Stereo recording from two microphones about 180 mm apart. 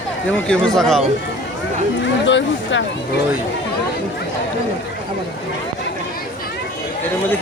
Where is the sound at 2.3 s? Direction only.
90° left.